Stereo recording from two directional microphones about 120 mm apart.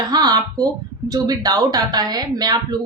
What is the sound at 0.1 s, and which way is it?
Speech, 35° right (ahead or behind).